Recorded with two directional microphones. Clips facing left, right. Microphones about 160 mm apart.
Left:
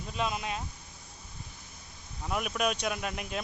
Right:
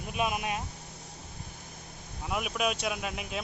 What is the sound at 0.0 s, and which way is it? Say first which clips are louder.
Speech: right 2 dB; 15° right (ahead or behind).